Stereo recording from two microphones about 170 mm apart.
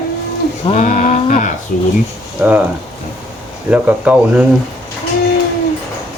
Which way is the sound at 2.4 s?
10° right (ahead or behind).